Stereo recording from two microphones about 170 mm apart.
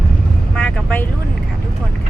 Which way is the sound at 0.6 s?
5° left (ahead or behind).